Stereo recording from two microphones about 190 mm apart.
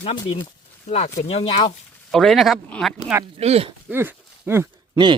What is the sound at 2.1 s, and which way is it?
Speech, centre (ahead or behind).